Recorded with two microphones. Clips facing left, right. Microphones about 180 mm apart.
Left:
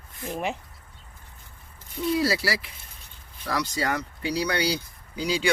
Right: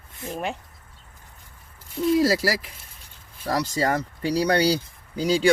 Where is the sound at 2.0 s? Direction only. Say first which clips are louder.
Right 5 dB; 45° right (ahead or behind).